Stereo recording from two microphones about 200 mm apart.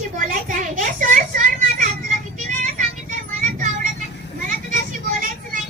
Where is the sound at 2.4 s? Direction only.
40° right (ahead or behind).